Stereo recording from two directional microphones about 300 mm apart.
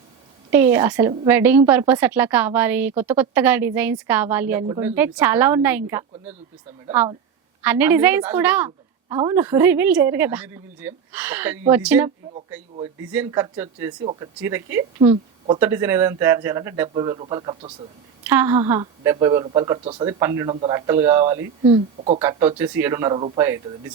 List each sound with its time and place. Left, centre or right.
0.5 s a woman's voice: centre
15.6 s a woman's voice: centre
22.2 s a woman's voice: centre